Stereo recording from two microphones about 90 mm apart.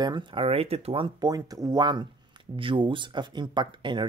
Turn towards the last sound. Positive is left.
turn(degrees=-60)  # may be behind; listen again after turning